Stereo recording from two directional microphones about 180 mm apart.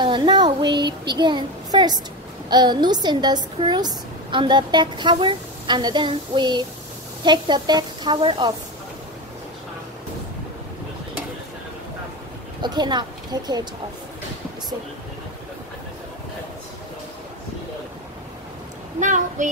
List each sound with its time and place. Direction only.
0.0 s a sound: 25° right (ahead or behind)
0.7 s a woman's voice: 25° right (ahead or behind)
12.6 s a woman's voice: 25° right (ahead or behind)
18.9 s a child's voice: 45° right (ahead or behind)